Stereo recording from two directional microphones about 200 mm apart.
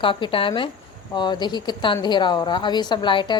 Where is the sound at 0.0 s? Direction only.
25° left (ahead or behind).